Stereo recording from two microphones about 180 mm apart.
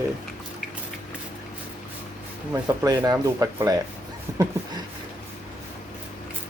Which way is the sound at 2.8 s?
20° right (ahead or behind).